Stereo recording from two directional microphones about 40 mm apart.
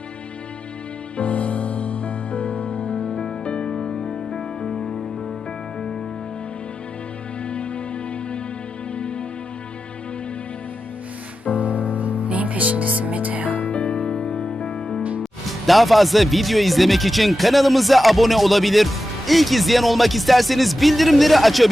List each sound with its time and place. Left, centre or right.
1.1 s music: left; by 4.9 s centre
7.4 s music: left
9.0 s music: left
11.5 s music: right
13.7 s music: left
15.2 s speech: centre